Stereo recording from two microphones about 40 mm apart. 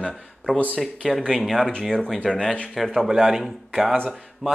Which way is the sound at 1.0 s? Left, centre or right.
Centre.